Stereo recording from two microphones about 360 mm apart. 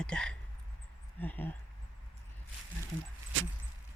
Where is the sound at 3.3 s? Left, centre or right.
Right.